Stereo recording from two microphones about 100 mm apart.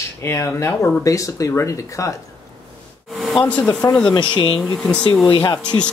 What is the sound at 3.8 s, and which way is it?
Speech, 35° left (ahead or behind).